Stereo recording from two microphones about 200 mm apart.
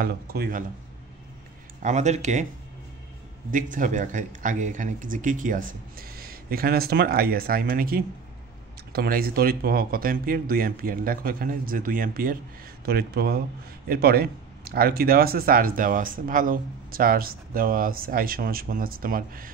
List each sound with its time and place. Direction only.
0.0 s speech: 50° right (ahead or behind)
1.8 s speech: 35° right (ahead or behind)
3.5 s speech: 40° right (ahead or behind)